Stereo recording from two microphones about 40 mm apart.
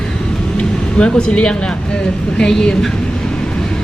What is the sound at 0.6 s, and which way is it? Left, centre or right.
Speech, left.